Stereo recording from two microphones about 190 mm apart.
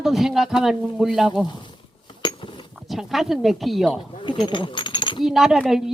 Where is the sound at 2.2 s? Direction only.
25° left (ahead or behind).